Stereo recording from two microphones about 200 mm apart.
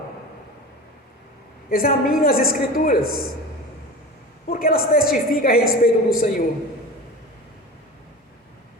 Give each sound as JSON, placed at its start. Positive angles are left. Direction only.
{"t": 1.7, "sound": "a woman's voice", "side_deg": 45}
{"t": 4.4, "sound": "a woman's voice", "side_deg": 50}